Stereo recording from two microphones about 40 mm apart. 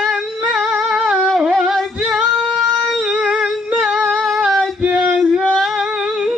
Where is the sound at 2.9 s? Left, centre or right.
Centre.